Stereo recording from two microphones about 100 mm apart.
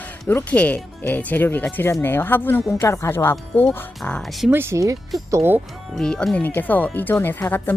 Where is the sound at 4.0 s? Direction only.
5° left (ahead or behind).